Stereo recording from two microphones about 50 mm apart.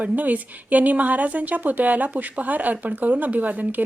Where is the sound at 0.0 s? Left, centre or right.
Right.